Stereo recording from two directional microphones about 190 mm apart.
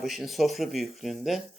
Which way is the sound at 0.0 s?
Centre (ahead or behind).